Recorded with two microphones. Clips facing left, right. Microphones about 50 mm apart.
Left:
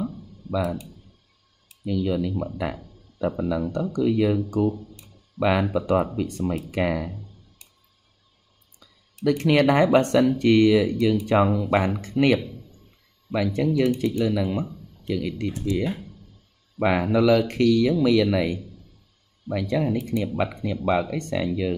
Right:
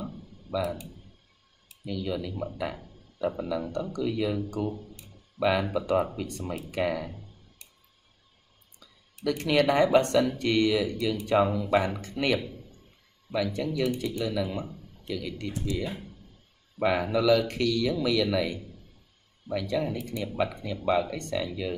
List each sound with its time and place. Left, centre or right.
0.5 s computer keyboard: right
2.0 s speech: left
9.2 s speech: left
16.8 s speech: left
19.5 s speech: left